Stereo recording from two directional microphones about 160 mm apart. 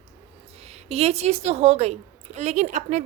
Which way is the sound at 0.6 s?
40° right (ahead or behind).